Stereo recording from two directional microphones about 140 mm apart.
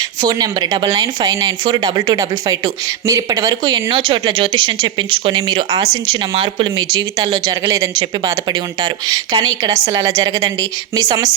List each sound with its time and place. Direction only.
0.2 s speech: 25° right (ahead or behind)